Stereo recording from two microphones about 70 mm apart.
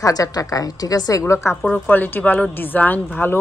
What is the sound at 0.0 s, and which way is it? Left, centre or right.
Speech, left.